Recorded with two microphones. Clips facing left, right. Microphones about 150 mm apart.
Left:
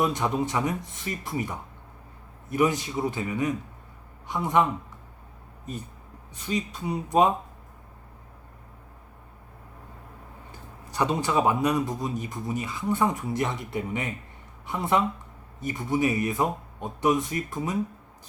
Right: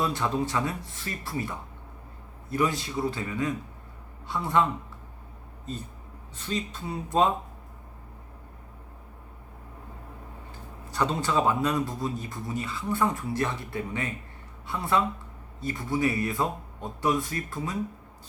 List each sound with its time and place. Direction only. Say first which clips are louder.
0.0 s speech: left 2 dB; 20° left (ahead or behind)
6.3 s speech: left 2 dB; 15° left (ahead or behind)
10.9 s speech: left 1 dB; 15° left (ahead or behind)